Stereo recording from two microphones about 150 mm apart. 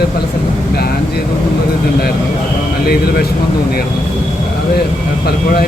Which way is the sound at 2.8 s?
90° left.